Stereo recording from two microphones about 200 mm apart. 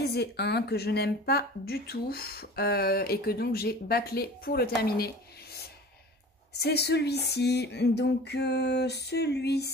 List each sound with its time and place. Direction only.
0.0 s speech: 55° left (ahead or behind)
4.8 s a sound: 50° left (ahead or behind)
6.6 s speech: 55° left (ahead or behind)